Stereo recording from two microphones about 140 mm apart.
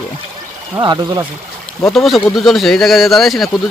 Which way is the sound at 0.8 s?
30° right (ahead or behind).